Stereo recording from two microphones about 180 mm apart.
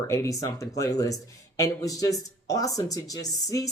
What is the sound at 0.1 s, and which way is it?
Speech, 15° left (ahead or behind).